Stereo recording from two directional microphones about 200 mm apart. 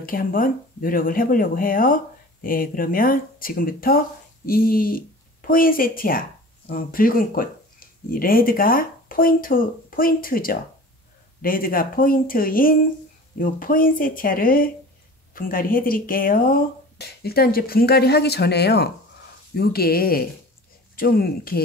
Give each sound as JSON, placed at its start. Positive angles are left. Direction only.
{"t": 0.0, "sound": "speech", "side_deg": 45}